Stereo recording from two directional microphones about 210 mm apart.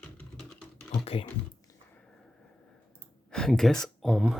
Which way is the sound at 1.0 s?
25° left (ahead or behind).